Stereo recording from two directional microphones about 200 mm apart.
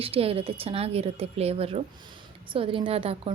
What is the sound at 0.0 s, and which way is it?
Speech, 30° right (ahead or behind).